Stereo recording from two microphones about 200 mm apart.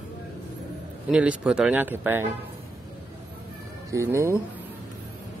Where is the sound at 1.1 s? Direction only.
5° right (ahead or behind).